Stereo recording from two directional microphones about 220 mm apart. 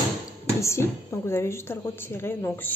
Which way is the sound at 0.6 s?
10° left (ahead or behind).